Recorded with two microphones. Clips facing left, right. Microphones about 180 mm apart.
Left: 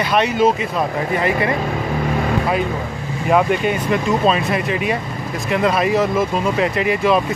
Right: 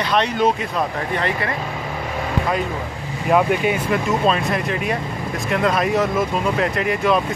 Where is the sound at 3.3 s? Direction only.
Centre (ahead or behind).